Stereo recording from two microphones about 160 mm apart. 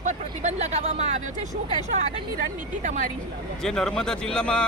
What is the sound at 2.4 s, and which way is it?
Speech, 50° right (ahead or behind).